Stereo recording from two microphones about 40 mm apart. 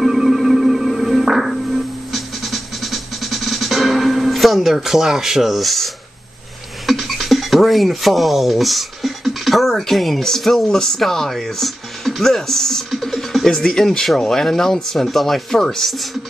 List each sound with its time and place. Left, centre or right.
0.0 s music: centre
6.9 s speech: centre
13.0 s music: centre
13.5 s speech: centre